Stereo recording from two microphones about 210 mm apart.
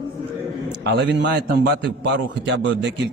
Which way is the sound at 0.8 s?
55° right (ahead or behind).